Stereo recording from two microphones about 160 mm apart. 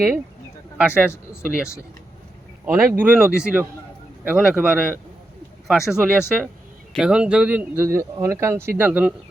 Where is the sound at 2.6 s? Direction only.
10° right (ahead or behind).